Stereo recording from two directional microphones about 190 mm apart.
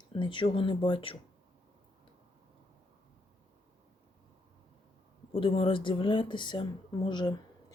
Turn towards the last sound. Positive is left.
turn(degrees=20)  # may be behind; listen again after turning